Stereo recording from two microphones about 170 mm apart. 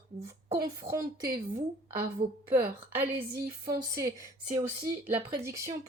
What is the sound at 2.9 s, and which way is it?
Speech, 15° right (ahead or behind).